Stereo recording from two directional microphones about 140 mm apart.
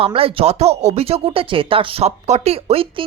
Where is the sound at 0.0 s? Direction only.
40° right (ahead or behind).